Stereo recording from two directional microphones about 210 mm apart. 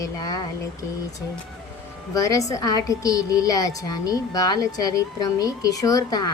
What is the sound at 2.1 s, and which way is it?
A woman's voice, 15° left (ahead or behind).